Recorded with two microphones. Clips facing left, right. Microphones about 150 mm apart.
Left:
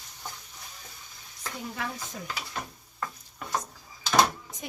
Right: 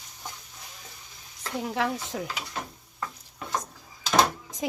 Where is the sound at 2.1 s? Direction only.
65° right (ahead or behind).